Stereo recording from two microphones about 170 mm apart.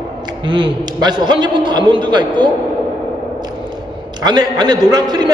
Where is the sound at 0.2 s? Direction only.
25° right (ahead or behind).